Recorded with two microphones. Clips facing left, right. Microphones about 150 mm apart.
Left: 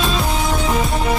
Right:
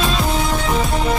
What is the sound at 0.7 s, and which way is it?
Music, 10° left (ahead or behind).